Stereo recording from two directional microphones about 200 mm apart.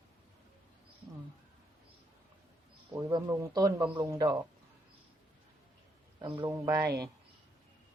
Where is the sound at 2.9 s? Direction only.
15° right (ahead or behind).